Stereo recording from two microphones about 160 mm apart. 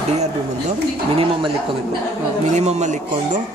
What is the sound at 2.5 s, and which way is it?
Speech, 45° right (ahead or behind).